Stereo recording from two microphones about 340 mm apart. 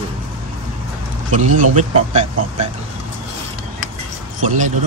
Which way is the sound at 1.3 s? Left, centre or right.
Right.